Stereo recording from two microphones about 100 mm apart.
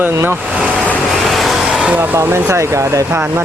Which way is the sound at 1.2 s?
Centre (ahead or behind).